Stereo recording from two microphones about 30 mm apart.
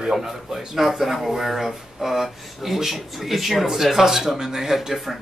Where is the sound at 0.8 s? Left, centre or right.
Centre.